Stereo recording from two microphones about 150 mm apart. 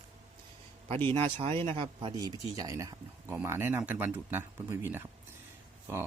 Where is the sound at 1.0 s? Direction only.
35° right (ahead or behind).